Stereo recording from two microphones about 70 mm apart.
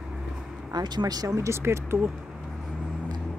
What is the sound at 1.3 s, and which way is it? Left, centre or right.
Speech, right.